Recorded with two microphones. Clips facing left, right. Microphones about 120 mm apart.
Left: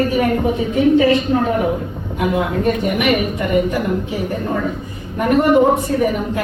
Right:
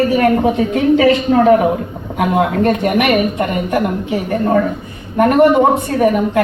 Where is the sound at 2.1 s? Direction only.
65° right (ahead or behind).